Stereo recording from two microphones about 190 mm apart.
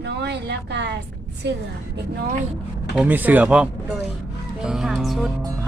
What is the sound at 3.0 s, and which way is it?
Speech, 10° right (ahead or behind).